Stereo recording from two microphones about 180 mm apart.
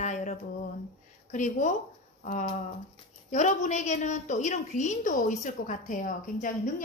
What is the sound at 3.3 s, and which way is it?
A woman's voice, 40° left (ahead or behind).